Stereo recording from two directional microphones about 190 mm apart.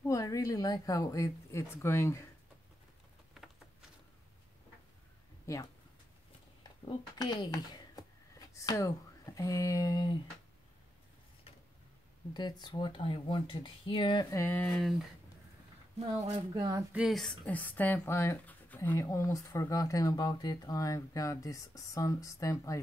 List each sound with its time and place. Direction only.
0.1 s speech: 15° left (ahead or behind)
5.5 s speech: 15° left (ahead or behind)
7.2 s speech: 20° left (ahead or behind)
12.4 s speech: 20° left (ahead or behind); by 15.0 s centre (ahead or behind)
16.5 s speech: 20° right (ahead or behind)
16.9 s speech: centre (ahead or behind); by 22.8 s 15° left (ahead or behind)